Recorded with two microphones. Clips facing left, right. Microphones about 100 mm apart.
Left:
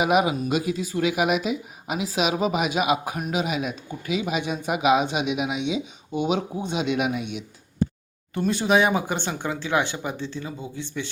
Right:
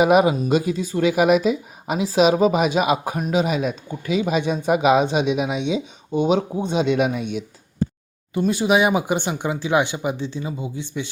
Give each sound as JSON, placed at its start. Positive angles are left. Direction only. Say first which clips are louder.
{"t": 0.0, "sound": "speech", "louder": "right 5 dB", "side_deg": -35}
{"t": 8.3, "sound": "speech", "louder": "right 3 dB", "side_deg": -5}